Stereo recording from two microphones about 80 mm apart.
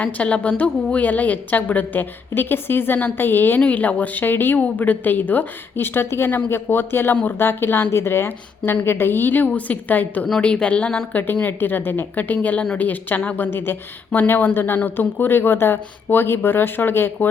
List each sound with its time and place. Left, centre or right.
0.0 s a woman's voice: centre